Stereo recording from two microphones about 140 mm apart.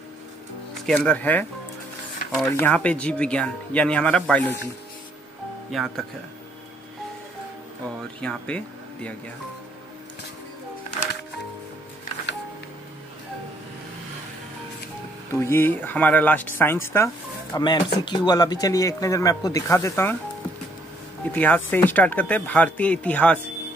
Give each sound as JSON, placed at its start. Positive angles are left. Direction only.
{"t": 0.8, "sound": "speech", "side_deg": 5}
{"t": 5.7, "sound": "speech", "side_deg": 0}
{"t": 8.2, "sound": "speech", "side_deg": 10}
{"t": 15.3, "sound": "speech", "side_deg": 15}
{"t": 21.3, "sound": "speech", "side_deg": 10}